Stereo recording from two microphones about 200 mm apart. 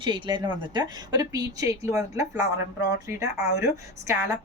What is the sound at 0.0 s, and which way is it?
A woman's voice, 20° right (ahead or behind).